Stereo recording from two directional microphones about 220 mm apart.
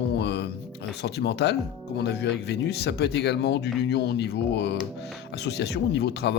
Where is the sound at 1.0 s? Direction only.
50° left (ahead or behind).